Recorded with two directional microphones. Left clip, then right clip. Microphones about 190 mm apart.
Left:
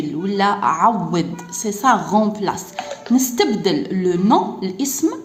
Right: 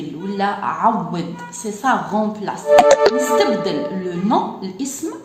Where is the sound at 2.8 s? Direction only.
65° right (ahead or behind).